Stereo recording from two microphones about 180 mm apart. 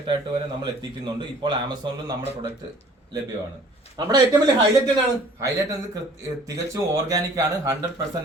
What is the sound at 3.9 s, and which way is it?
Speech, 25° right (ahead or behind).